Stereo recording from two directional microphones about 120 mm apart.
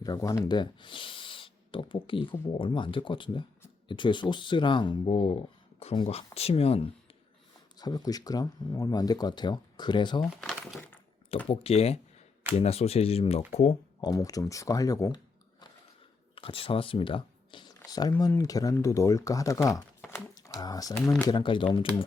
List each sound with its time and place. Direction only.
0.0 s speech: 30° left (ahead or behind)
0.5 s speech: 40° left (ahead or behind)
7.8 s speech: 35° left (ahead or behind)
10.2 s speech: 5° right (ahead or behind)
11.4 s speech: 55° left (ahead or behind)
14.0 s speech: 30° left (ahead or behind)
16.3 s speech: 50° left (ahead or behind); by 19.5 s 25° left (ahead or behind)
20.1 s a sound: 25° left (ahead or behind)
20.6 s speech: 30° left (ahead or behind)
21.3 s speech: 40° left (ahead or behind)